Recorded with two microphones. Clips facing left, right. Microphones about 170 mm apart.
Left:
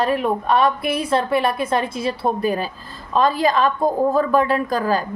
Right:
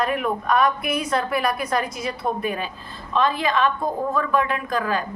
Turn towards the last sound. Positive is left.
turn(degrees=35)  # may be behind; listen again after turning